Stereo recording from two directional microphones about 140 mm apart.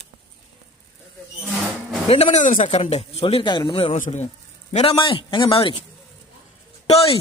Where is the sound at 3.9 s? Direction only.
55° left (ahead or behind).